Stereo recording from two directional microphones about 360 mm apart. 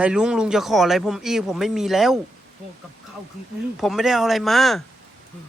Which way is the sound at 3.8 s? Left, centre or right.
Centre.